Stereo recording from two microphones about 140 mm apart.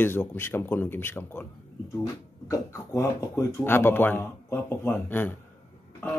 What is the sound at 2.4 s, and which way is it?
Speech, 25° left (ahead or behind).